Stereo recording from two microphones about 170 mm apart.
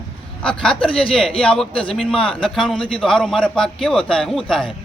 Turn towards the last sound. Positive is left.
turn(degrees=5)  # may be behind; listen again after turning